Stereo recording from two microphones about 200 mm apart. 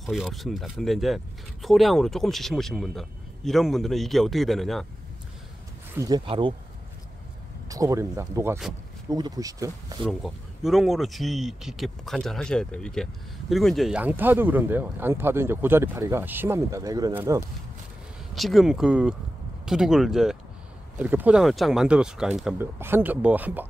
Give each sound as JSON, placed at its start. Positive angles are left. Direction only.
{"t": 0.0, "sound": "speech", "side_deg": 0}
{"t": 5.9, "sound": "speech", "side_deg": -20}
{"t": 7.6, "sound": "speech", "side_deg": -15}
{"t": 10.0, "sound": "speech", "side_deg": 0}
{"t": 18.3, "sound": "speech", "side_deg": 0}